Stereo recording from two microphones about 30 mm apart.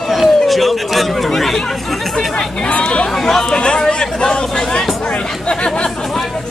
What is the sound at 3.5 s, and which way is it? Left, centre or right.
Speech, left.